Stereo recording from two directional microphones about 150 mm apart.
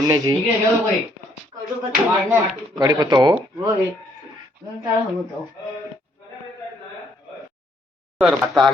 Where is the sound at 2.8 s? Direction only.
25° right (ahead or behind).